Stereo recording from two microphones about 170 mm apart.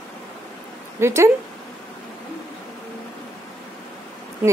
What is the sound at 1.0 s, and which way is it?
Speech, 15° right (ahead or behind).